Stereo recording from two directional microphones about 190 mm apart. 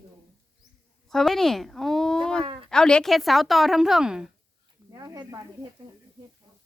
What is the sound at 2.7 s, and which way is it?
A woman's voice, 5° left (ahead or behind).